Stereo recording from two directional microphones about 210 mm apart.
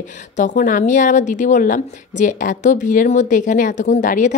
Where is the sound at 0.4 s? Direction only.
35° left (ahead or behind).